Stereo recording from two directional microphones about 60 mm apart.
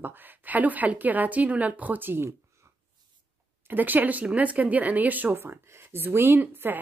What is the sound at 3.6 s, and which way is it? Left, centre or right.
A woman's voice, right.